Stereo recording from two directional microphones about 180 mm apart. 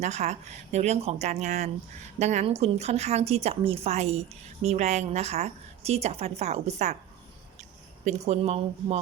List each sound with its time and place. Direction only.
0.0 s a woman's voice: 40° right (ahead or behind)
8.0 s a woman's voice: 35° right (ahead or behind)